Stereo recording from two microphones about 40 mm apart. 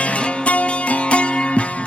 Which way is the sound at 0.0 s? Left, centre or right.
Left.